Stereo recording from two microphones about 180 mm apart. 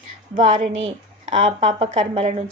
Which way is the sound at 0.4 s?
30° right (ahead or behind).